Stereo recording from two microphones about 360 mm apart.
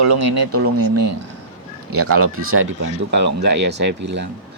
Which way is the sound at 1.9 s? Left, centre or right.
Right.